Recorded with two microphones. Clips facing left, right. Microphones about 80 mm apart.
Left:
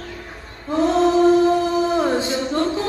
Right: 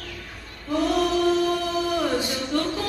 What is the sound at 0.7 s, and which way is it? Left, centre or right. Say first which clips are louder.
Singing: left 5 dB; left.